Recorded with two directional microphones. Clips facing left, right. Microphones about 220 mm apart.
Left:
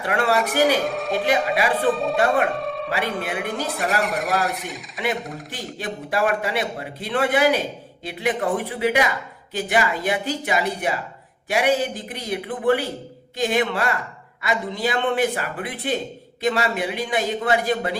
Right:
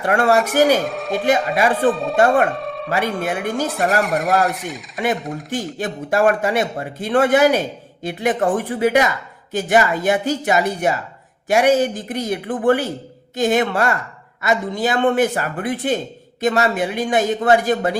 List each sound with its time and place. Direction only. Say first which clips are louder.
0.1 s a man's voice: right 5 dB; 45° right (ahead or behind)
0.3 s speech: right 4 dB; centre (ahead or behind)
1.5 s a man's voice: right 4 dB; 45° right (ahead or behind)
1.9 s speech: right 1 dB; centre (ahead or behind)
2.1 s a man's voice: right 5 dB; 45° right (ahead or behind)
2.5 s a sound: right 1 dB; centre (ahead or behind)
3.0 s speech: right 6 dB; centre (ahead or behind)
5.5 s a man's voice: right 7 dB; 45° right (ahead or behind)